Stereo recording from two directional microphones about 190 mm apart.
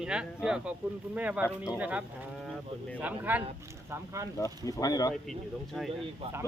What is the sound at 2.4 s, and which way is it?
Speech, 5° left (ahead or behind).